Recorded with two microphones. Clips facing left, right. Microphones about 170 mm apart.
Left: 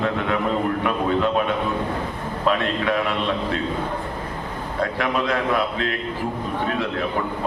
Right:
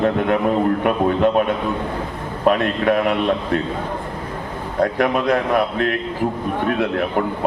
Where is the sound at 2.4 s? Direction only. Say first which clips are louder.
Right 5 dB; 50° right (ahead or behind).